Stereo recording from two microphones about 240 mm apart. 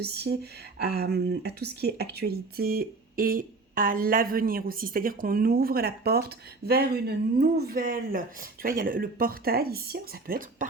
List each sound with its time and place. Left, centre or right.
0.0 s speech: right